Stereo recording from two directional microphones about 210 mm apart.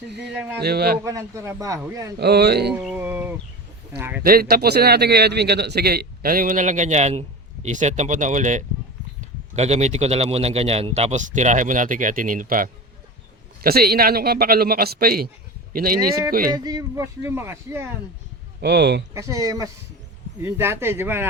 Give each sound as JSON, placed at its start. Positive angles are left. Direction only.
{"t": 0.1, "sound": "a man's voice", "side_deg": -50}
{"t": 0.3, "sound": "speech", "side_deg": -5}
{"t": 0.6, "sound": "a man's voice", "side_deg": -50}
{"t": 1.0, "sound": "speech", "side_deg": -15}
{"t": 2.1, "sound": "a man's voice", "side_deg": -50}
{"t": 2.8, "sound": "a sound", "side_deg": -10}
{"t": 4.2, "sound": "a man's voice", "side_deg": -45}
{"t": 16.6, "sound": "speech", "side_deg": -15}
{"t": 18.6, "sound": "a man's voice", "side_deg": -50}
{"t": 19.1, "sound": "speech", "side_deg": -15}